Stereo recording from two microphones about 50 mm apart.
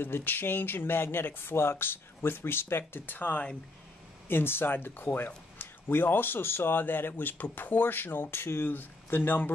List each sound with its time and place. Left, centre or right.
0.0 s speech: left
4.3 s speech: left